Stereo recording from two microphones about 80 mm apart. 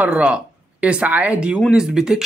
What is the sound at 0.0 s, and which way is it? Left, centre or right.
A man's voice, centre.